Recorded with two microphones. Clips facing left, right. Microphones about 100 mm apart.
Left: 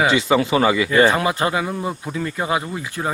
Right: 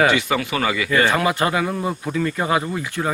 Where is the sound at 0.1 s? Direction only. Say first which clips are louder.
Left 4 dB; 25° left (ahead or behind).